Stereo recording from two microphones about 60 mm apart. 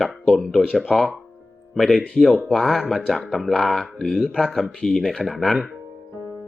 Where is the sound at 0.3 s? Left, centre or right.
Centre.